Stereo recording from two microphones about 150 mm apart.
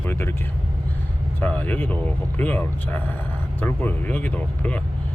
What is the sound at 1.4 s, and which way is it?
Speech, 10° left (ahead or behind).